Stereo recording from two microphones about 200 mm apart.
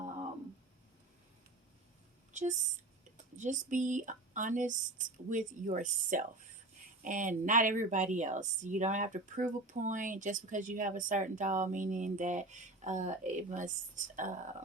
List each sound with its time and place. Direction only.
2.3 s a woman's voice: 35° right (ahead or behind)